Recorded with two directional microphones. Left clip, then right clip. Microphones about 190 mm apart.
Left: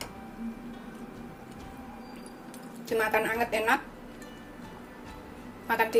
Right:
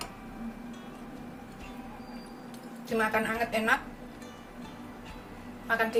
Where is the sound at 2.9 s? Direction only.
30° left (ahead or behind).